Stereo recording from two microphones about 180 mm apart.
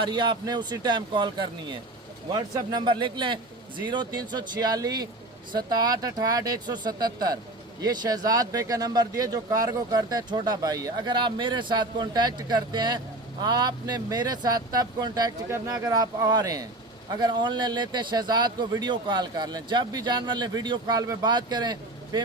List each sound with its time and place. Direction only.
0.0 s speech: 25° right (ahead or behind)